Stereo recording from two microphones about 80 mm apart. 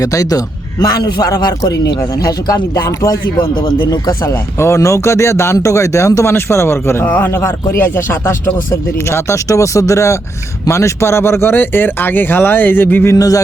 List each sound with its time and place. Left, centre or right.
0.0 s a man's voice: left
13.1 s a man's voice: left